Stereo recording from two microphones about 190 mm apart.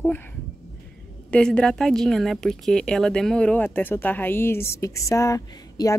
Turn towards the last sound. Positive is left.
turn(degrees=15)  # may be behind; listen again after turning